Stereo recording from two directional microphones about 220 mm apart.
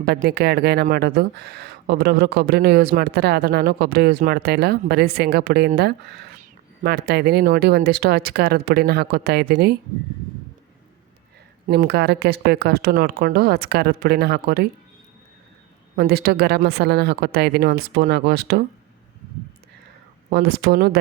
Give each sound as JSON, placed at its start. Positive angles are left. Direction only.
{"t": 0.0, "sound": "speech", "side_deg": -45}
{"t": 11.7, "sound": "speech", "side_deg": -50}
{"t": 16.0, "sound": "speech", "side_deg": -45}
{"t": 20.3, "sound": "speech", "side_deg": -45}